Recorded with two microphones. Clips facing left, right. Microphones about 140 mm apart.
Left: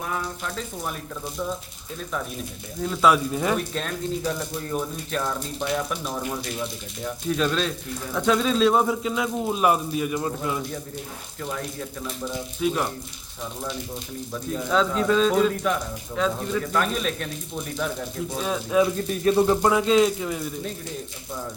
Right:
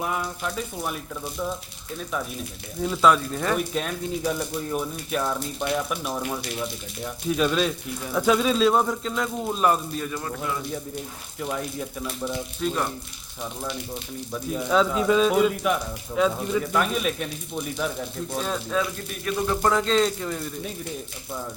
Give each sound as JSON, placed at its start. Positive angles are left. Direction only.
{"t": 0.0, "sound": "speech", "side_deg": -10}
{"t": 2.8, "sound": "speech", "side_deg": -5}
{"t": 3.1, "sound": "speech", "side_deg": 10}
{"t": 3.8, "sound": "speech", "side_deg": -5}
{"t": 11.3, "sound": "speech", "side_deg": -10}
{"t": 12.5, "sound": "speech", "side_deg": 5}
{"t": 14.5, "sound": "speech", "side_deg": -5}
{"t": 19.1, "sound": "speech", "side_deg": 30}
{"t": 19.6, "sound": "speech", "side_deg": 10}